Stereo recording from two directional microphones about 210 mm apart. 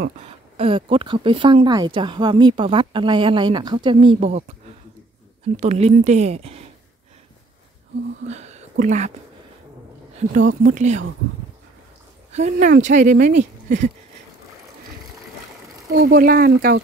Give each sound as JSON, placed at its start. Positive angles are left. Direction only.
{"t": 0.6, "sound": "speech", "side_deg": -25}
{"t": 5.6, "sound": "speech", "side_deg": -30}
{"t": 8.3, "sound": "speech", "side_deg": -30}
{"t": 10.6, "sound": "speech", "side_deg": -35}
{"t": 12.3, "sound": "speech", "side_deg": -35}
{"t": 15.9, "sound": "speech", "side_deg": -45}